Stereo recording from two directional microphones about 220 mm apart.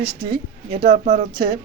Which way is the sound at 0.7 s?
40° right (ahead or behind).